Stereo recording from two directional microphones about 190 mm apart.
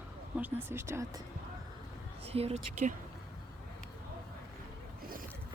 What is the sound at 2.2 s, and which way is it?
Speech, 30° right (ahead or behind).